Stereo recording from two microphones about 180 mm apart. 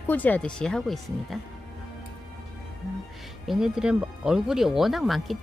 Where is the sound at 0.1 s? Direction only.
10° left (ahead or behind).